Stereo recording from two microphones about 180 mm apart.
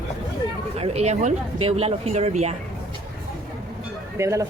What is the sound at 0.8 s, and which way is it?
Speech, 35° right (ahead or behind).